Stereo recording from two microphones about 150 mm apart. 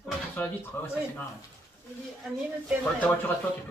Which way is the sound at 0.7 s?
15° left (ahead or behind).